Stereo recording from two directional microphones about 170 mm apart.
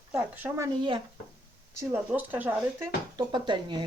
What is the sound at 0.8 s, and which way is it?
Speech, 30° right (ahead or behind).